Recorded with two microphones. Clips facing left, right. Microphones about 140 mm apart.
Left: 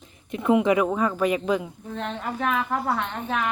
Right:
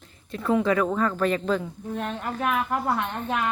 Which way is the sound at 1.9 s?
5° right (ahead or behind).